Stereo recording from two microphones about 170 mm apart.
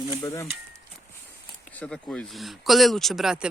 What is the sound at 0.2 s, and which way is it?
Speech, 20° left (ahead or behind).